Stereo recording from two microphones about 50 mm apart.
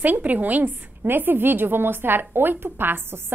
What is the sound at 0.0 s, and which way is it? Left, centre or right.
A woman's voice, right.